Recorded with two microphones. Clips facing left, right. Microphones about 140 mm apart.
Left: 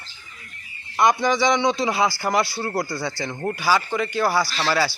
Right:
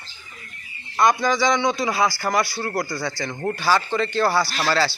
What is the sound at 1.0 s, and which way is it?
Speech, 20° left (ahead or behind).